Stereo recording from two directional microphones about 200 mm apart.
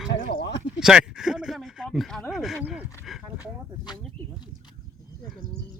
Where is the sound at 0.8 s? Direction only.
5° right (ahead or behind).